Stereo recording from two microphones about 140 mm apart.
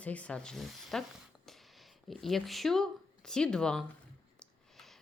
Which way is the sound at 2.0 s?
Centre (ahead or behind).